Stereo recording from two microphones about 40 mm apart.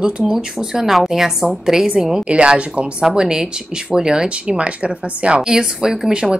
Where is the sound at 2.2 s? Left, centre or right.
Right.